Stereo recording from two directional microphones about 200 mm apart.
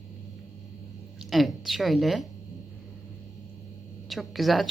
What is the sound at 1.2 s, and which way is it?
A woman's voice, centre (ahead or behind).